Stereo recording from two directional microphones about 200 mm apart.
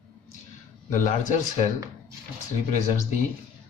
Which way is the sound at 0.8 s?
40° left (ahead or behind).